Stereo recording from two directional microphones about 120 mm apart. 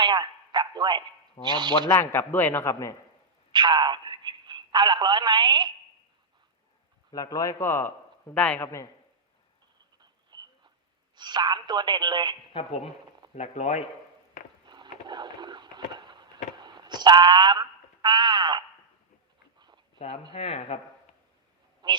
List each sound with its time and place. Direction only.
0.0 s a man's voice: 40° right (ahead or behind)
1.9 s a man's voice: 20° left (ahead or behind)
3.5 s a man's voice: 40° right (ahead or behind)
7.1 s a man's voice: 30° left (ahead or behind); by 8.6 s 10° left (ahead or behind)
8.6 s a man's voice: 25° left (ahead or behind)
10.0 s a sound: 35° right (ahead or behind)
11.2 s speech: 35° right (ahead or behind)
12.5 s speech: 55° left (ahead or behind)
13.3 s speech: 70° left (ahead or behind)
14.7 s a sound: 35° right (ahead or behind)
20.3 s speech: 60° left (ahead or behind)
21.8 s a sound: 40° right (ahead or behind)